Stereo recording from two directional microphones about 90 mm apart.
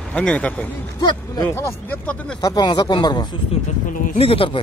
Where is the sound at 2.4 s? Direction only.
50° left (ahead or behind).